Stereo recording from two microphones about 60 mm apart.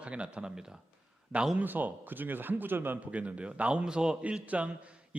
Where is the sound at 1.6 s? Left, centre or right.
Right.